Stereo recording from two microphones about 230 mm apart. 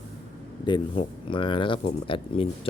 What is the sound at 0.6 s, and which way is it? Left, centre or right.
Speech, left.